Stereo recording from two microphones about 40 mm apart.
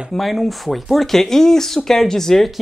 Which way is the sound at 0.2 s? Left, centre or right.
Centre.